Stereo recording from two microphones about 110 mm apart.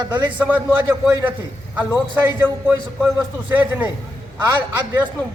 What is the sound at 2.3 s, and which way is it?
A man's voice, 20° right (ahead or behind).